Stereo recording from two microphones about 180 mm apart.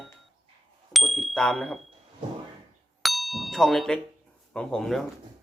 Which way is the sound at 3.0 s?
Centre (ahead or behind).